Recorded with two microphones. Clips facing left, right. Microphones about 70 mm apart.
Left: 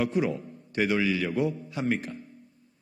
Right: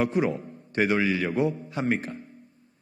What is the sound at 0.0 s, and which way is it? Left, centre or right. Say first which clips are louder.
A man's voice: right 2 dB; right.